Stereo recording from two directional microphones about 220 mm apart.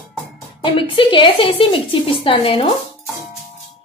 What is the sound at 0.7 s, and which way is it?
A woman's voice, 25° left (ahead or behind).